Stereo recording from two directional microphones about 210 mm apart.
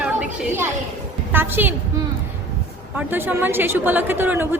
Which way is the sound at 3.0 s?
10° right (ahead or behind).